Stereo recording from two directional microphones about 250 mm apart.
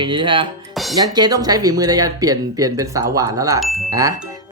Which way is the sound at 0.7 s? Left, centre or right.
Centre.